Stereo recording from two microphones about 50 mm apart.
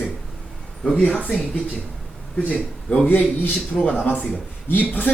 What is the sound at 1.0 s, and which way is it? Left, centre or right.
Speech, left.